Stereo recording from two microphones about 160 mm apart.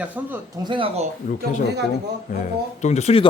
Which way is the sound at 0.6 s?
30° right (ahead or behind).